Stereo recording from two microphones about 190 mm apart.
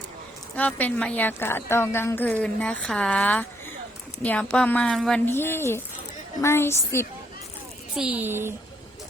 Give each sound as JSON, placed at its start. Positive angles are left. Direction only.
{"t": 0.5, "sound": "a woman's voice", "side_deg": 10}
{"t": 7.9, "sound": "a child's voice", "side_deg": -5}